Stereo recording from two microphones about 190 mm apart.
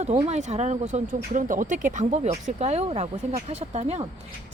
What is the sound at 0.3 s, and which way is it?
Speech, 35° right (ahead or behind).